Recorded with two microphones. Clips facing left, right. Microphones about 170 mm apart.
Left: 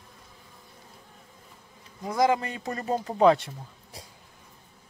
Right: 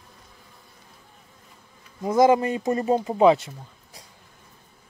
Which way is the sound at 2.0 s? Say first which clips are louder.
Right 6 dB; 25° right (ahead or behind).